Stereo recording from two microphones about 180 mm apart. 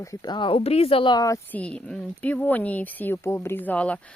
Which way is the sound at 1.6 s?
5° left (ahead or behind).